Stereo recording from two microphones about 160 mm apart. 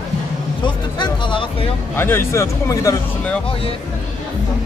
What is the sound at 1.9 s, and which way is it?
Speech, 15° left (ahead or behind).